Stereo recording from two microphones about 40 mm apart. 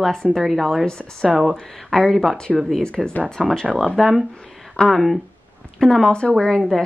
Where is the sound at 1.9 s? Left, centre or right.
Centre.